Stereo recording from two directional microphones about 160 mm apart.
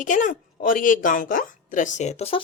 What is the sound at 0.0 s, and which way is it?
A woman's voice, 55° left (ahead or behind).